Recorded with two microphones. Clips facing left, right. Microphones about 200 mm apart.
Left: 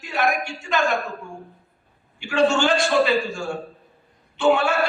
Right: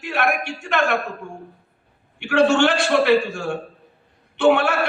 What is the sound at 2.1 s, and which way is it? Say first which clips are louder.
A man's voice: right 3 dB; 65° right (ahead or behind).